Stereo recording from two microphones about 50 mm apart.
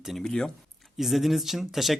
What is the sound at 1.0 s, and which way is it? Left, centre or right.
Speech, centre.